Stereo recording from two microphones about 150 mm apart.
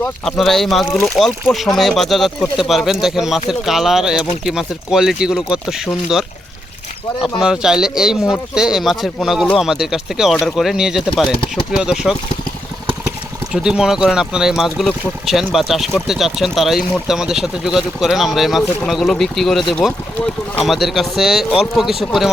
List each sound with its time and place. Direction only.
0.0 s speech: centre (ahead or behind)
7.3 s speech: 5° right (ahead or behind)
13.5 s speech: 5° right (ahead or behind)